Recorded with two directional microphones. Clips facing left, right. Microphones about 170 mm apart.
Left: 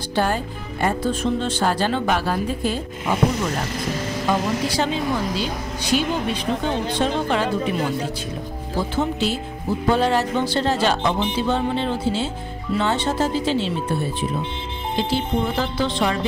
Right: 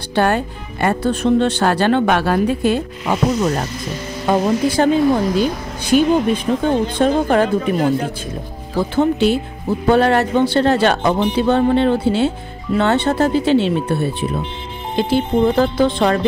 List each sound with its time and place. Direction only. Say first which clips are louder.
0.1 s speech: right 6 dB; 65° right (ahead or behind)
4.3 s speech: right 7 dB; 50° right (ahead or behind)
15.0 s speech: right 7 dB; 55° right (ahead or behind)